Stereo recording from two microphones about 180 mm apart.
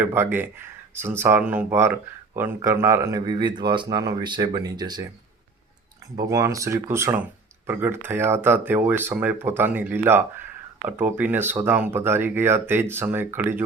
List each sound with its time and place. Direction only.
0.0 s speech: 10° right (ahead or behind)
6.2 s speech: 15° right (ahead or behind)